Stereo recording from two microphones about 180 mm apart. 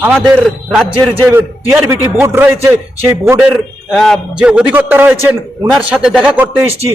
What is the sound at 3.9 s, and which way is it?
A man's voice, centre (ahead or behind).